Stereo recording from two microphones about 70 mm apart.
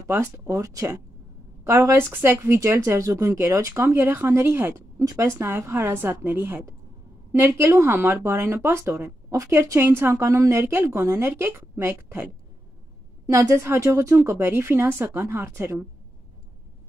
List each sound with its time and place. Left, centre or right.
0.2 s speech: right
3.8 s a woman's voice: right
4.7 s a woman's voice: right
13.3 s a woman's voice: right